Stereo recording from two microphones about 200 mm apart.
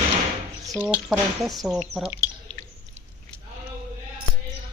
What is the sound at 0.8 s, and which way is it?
Speech, 5° right (ahead or behind).